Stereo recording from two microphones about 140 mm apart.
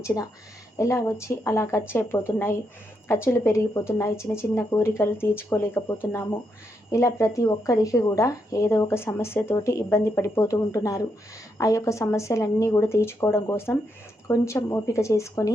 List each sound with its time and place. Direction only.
0.0 s speech: 25° left (ahead or behind)